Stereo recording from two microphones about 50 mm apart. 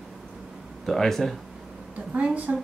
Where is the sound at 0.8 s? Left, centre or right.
Centre.